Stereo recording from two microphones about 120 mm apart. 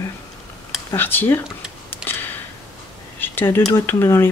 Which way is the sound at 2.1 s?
15° left (ahead or behind).